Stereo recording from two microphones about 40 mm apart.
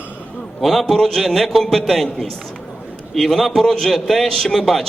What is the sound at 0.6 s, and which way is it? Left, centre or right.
A man's voice, centre.